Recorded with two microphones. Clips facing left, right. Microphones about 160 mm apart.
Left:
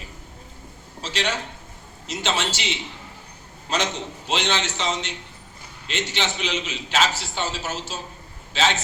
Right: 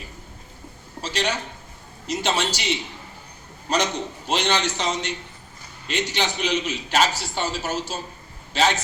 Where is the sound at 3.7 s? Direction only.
40° right (ahead or behind).